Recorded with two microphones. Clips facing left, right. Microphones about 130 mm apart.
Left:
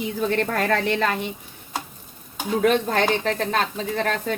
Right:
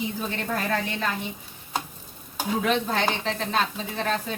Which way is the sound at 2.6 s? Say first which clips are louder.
Left 6 dB; 50° left (ahead or behind).